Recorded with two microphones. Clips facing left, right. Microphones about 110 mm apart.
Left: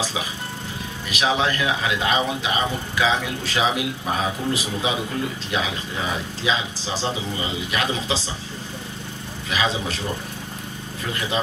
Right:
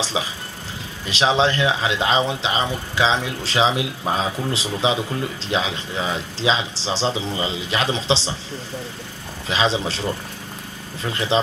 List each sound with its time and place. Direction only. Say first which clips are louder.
1.1 s speech: right 4 dB; 30° right (ahead or behind)
9.5 s speech: right 3 dB; 30° right (ahead or behind)